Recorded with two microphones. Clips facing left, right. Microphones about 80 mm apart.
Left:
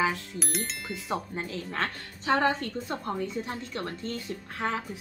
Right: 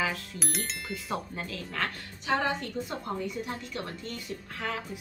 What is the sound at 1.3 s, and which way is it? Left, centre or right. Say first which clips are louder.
A woman's voice: left 3 dB; left.